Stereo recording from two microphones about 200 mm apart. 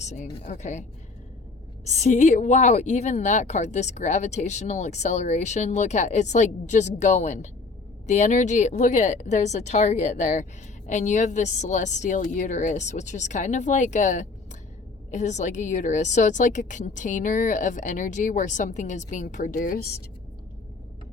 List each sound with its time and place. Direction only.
0.0 s a woman's voice: 35° left (ahead or behind)